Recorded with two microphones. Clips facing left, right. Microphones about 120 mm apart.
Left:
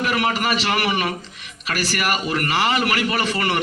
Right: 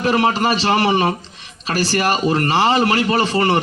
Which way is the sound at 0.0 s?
30° right (ahead or behind).